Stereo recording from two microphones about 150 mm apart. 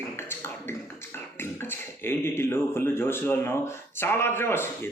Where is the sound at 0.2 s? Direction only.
15° left (ahead or behind).